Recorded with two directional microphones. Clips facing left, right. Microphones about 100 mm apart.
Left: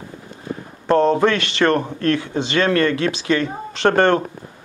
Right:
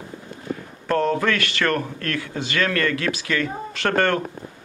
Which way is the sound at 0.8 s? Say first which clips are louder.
Left 6 dB; 25° left (ahead or behind).